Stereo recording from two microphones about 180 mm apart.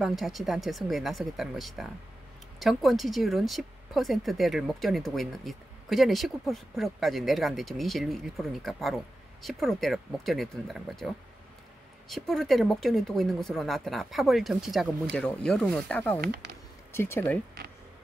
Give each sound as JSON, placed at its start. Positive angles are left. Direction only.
{"t": 0.0, "sound": "speech", "side_deg": 0}
{"t": 12.1, "sound": "speech", "side_deg": 0}
{"t": 16.4, "sound": "a sound", "side_deg": -70}
{"t": 16.9, "sound": "speech", "side_deg": 15}